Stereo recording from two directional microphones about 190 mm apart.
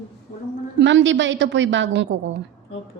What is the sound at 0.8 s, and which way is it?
A woman's voice, 75° right (ahead or behind).